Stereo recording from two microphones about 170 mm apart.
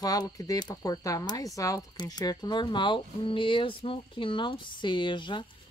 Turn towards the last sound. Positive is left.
turn(degrees=30)  # may be behind; listen again after turning